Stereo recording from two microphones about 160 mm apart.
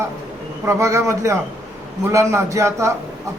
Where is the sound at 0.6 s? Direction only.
20° right (ahead or behind).